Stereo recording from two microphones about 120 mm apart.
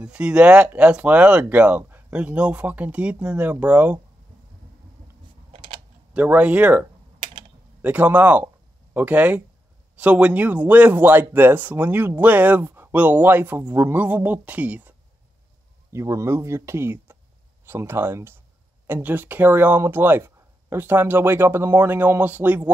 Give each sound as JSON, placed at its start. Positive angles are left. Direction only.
{"t": 0.0, "sound": "speech", "side_deg": -10}
{"t": 5.5, "sound": "a sound", "side_deg": -40}
{"t": 6.1, "sound": "speech", "side_deg": -15}
{"t": 15.9, "sound": "speech", "side_deg": -25}